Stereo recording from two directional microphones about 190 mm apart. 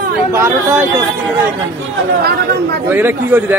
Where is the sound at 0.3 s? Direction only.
10° right (ahead or behind).